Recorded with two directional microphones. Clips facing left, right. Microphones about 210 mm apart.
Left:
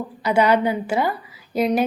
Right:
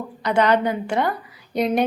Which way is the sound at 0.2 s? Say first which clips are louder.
Left 1 dB; 5° left (ahead or behind).